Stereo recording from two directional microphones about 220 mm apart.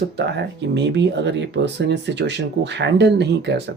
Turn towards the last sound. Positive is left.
turn(degrees=-50)  # may be behind; listen again after turning